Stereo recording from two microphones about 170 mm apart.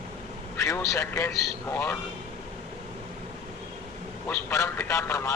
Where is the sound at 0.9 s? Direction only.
15° left (ahead or behind).